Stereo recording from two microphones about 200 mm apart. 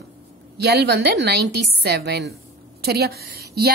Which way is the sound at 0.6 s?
55° right (ahead or behind).